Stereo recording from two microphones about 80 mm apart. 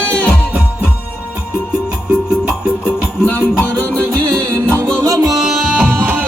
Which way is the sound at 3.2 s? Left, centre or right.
Left.